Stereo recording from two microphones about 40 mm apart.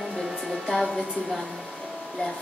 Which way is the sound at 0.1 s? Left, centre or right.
Centre.